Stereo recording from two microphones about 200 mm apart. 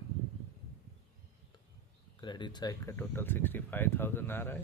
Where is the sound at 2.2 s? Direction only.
20° left (ahead or behind).